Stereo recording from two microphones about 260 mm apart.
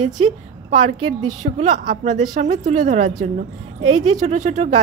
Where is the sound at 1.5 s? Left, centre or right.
Right.